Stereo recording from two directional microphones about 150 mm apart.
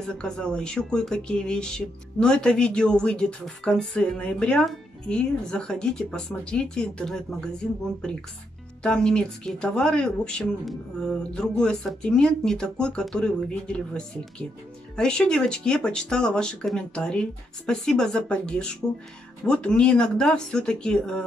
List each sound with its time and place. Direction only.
0.0 s speech: 5° left (ahead or behind)